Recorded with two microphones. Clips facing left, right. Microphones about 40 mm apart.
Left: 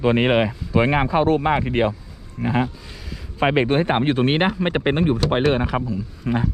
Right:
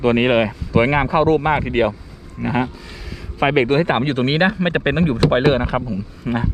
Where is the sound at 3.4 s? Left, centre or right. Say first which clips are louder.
Right 2 dB; right.